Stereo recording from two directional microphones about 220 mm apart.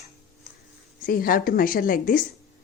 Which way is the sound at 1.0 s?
40° left (ahead or behind).